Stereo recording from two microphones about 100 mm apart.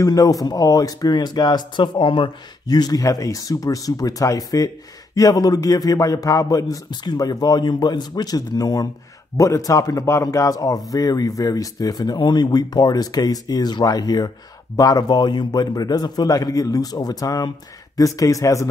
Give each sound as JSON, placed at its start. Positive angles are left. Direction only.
{"t": 0.0, "sound": "speech", "side_deg": 35}
{"t": 2.6, "sound": "a man's voice", "side_deg": 40}